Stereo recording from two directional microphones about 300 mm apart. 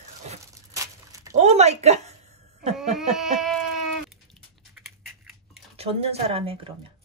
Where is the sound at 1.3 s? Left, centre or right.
Right.